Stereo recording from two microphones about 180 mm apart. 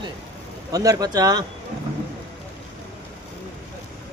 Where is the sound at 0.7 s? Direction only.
20° right (ahead or behind).